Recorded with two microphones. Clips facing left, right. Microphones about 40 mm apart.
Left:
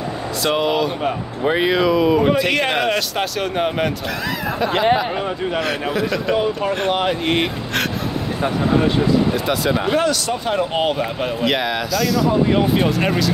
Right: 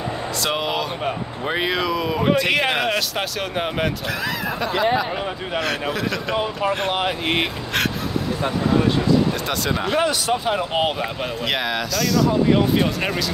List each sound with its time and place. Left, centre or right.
0.4 s speech: centre
2.2 s speech: centre
4.9 s speech: centre
8.8 s speech: centre
10.0 s speech: centre
10.4 s speech: centre